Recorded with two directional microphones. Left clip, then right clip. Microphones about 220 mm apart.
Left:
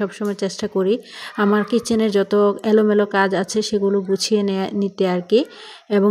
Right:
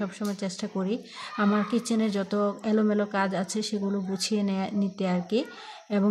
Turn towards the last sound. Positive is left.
turn(degrees=30)  # may be behind; listen again after turning